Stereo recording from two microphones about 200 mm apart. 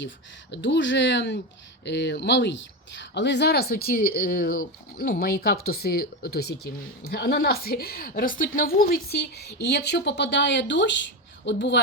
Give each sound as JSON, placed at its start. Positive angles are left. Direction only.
{"t": 0.5, "sound": "a woman's voice", "side_deg": 65}